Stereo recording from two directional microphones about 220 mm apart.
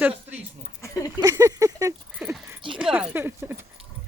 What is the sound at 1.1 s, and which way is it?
Speech, 15° right (ahead or behind).